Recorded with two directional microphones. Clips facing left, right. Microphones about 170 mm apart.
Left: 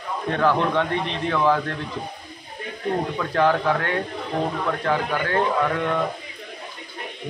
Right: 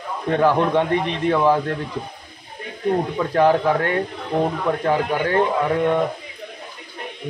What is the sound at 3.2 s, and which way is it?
Speech, 15° right (ahead or behind).